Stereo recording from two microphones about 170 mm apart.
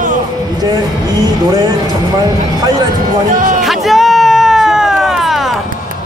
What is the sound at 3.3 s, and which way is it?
Music, 50° right (ahead or behind).